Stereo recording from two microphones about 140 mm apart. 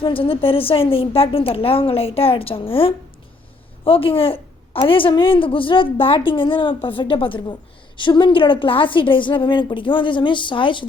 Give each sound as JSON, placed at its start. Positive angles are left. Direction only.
{"t": 0.0, "sound": "a woman's voice", "side_deg": 40}